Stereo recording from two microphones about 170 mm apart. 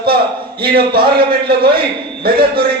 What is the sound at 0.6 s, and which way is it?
Speech, 65° right (ahead or behind).